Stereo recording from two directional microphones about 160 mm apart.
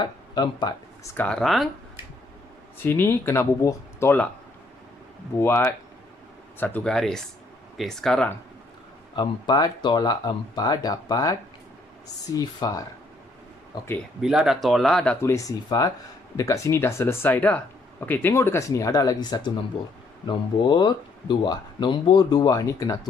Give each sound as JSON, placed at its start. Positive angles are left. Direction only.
{"t": 0.0, "sound": "speech", "side_deg": 25}
{"t": 1.1, "sound": "speech", "side_deg": 5}
{"t": 2.8, "sound": "speech", "side_deg": 15}
{"t": 5.4, "sound": "speech", "side_deg": 15}
{"t": 9.1, "sound": "speech", "side_deg": 25}
{"t": 14.2, "sound": "speech", "side_deg": -5}